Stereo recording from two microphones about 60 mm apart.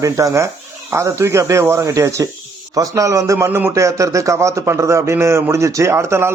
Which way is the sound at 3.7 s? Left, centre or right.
Right.